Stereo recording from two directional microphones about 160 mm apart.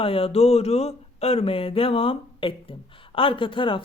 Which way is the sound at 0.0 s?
35° left (ahead or behind).